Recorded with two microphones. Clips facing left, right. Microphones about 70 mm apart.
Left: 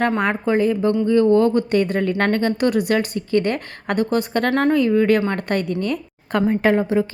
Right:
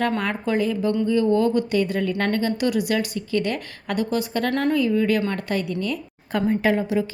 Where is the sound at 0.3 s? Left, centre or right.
Left.